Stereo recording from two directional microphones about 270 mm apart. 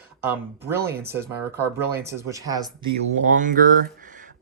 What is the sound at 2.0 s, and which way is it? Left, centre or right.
Speech, centre.